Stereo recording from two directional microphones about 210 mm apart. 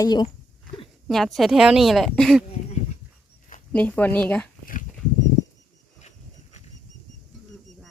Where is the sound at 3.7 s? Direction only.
5° left (ahead or behind).